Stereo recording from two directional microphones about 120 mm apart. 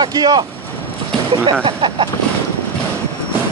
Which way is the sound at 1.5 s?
45° right (ahead or behind).